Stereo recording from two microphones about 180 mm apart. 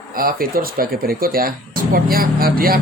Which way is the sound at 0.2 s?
55° right (ahead or behind).